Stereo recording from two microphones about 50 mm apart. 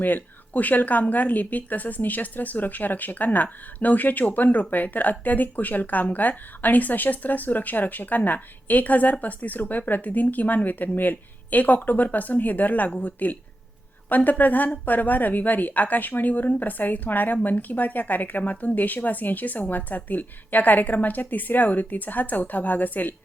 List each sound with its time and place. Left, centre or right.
0.0 s a woman's voice: left